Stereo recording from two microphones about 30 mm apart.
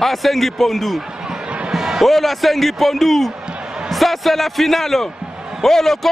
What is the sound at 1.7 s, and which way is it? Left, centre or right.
Music, centre.